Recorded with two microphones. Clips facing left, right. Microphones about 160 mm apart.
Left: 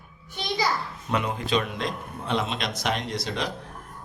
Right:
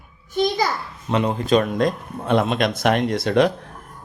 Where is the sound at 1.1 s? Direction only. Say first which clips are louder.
Right 6 dB; 30° right (ahead or behind).